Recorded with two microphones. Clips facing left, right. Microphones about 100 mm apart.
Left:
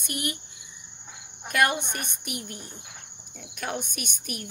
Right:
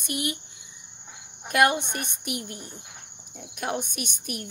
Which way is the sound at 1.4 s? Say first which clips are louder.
Right 3 dB; 25° right (ahead or behind).